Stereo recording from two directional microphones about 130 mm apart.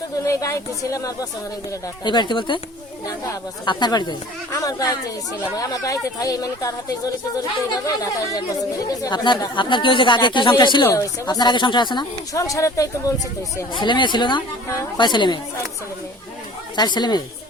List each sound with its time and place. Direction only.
0.3 s speech: 25° left (ahead or behind)
2.0 s speech: 35° left (ahead or behind)
3.7 s speech: 35° left (ahead or behind)
13.7 s speech: 35° left (ahead or behind)
16.7 s speech: 35° left (ahead or behind)